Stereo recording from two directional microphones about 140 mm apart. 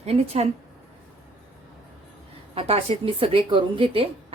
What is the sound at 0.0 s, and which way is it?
Speech, 50° right (ahead or behind).